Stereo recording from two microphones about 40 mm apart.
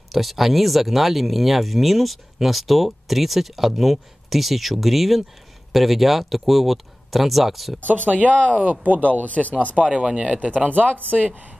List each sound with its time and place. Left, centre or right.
0.1 s speech: centre
8.1 s speech: right
9.0 s speech: left
10.0 s speech: right